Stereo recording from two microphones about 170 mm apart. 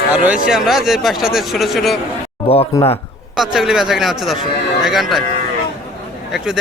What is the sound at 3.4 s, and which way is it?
Speech, centre (ahead or behind).